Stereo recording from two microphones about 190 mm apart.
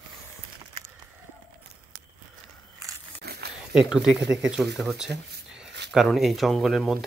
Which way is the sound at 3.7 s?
Centre (ahead or behind).